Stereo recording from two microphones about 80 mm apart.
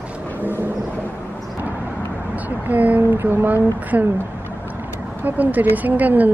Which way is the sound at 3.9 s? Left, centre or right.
Centre.